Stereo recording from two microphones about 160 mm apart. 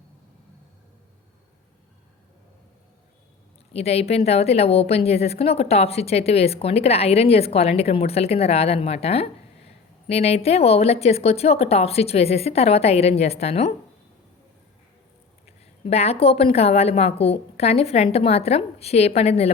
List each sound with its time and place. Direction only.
3.7 s a woman's voice: 40° left (ahead or behind)
15.4 s a woman's voice: 40° left (ahead or behind)